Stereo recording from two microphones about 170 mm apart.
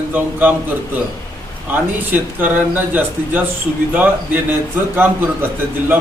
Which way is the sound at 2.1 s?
10° right (ahead or behind).